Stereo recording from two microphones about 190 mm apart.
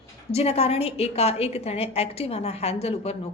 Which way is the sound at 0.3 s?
30° left (ahead or behind).